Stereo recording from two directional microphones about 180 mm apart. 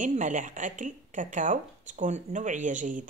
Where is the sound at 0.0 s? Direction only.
45° right (ahead or behind).